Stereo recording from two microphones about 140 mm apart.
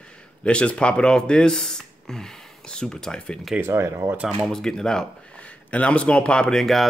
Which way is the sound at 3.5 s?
15° right (ahead or behind).